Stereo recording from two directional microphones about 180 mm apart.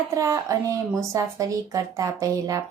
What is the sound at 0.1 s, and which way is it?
A woman's voice, 15° right (ahead or behind).